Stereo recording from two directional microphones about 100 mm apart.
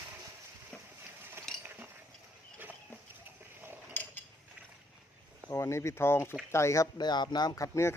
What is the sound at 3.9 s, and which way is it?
Mechanisms, 15° left (ahead or behind).